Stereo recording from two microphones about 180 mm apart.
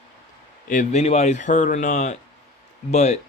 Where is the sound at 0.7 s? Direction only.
40° left (ahead or behind).